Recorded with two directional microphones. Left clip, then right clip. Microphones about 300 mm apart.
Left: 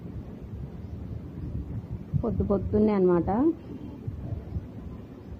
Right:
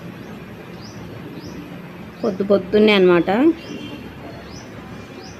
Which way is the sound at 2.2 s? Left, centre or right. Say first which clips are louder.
Right 11 dB; right.